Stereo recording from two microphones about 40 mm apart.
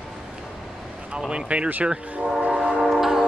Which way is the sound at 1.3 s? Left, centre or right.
Right.